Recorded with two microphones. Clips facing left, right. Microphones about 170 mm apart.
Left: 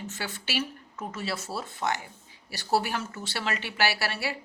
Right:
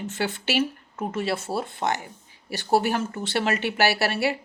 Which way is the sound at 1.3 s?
30° right (ahead or behind).